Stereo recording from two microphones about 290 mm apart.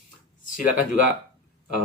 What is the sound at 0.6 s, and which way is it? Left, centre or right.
Speech, left.